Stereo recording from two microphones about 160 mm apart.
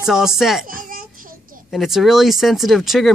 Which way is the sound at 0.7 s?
60° right (ahead or behind).